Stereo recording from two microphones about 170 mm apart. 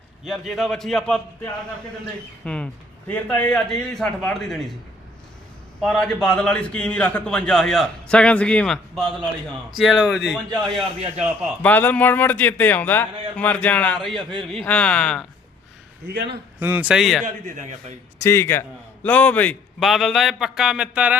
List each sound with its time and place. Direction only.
0.3 s a man's voice: centre (ahead or behind)
2.4 s a man's voice: 5° left (ahead or behind)
5.8 s a man's voice: 5° left (ahead or behind)
11.6 s a man's voice: 10° left (ahead or behind)
16.0 s a man's voice: 75° right (ahead or behind)
16.6 s speech: 10° right (ahead or behind)
17.5 s a man's voice: 45° right (ahead or behind)
18.2 s a man's voice: 15° left (ahead or behind); by 21.2 s 5° right (ahead or behind)